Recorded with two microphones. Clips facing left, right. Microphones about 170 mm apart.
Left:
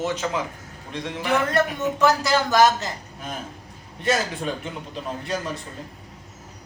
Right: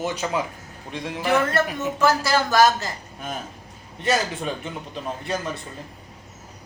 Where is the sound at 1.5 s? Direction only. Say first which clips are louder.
Left 1 dB; 20° left (ahead or behind).